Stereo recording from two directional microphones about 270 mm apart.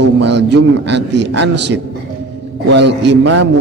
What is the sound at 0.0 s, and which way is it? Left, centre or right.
A man's voice, right.